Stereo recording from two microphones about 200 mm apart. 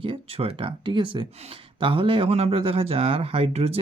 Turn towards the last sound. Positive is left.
turn(degrees=-30)  # may be behind; listen again after turning